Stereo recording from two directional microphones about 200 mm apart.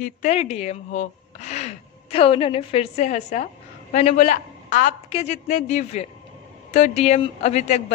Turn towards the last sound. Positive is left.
turn(degrees=35)  # may be behind; listen again after turning